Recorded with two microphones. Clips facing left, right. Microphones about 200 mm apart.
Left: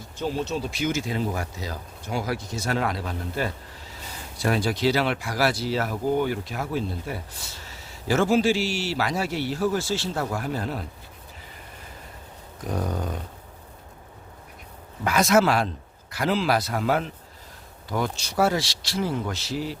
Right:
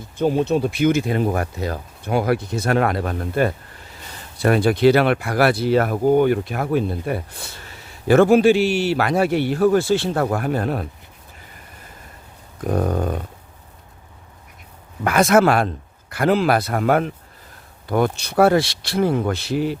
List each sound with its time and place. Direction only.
0.2 s speech: 55° right (ahead or behind)
12.6 s speech: 55° right (ahead or behind)
15.0 s speech: 55° right (ahead or behind)